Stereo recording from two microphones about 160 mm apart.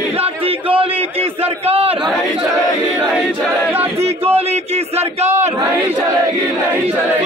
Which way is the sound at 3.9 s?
40° right (ahead or behind).